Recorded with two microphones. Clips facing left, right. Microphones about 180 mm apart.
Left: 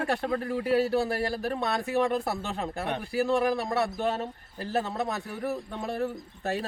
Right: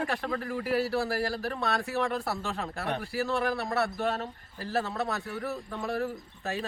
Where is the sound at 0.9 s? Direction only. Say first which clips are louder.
Left 2 dB; 20° left (ahead or behind).